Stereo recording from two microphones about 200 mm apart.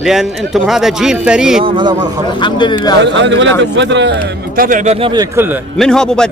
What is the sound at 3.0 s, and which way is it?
Speech, 65° right (ahead or behind).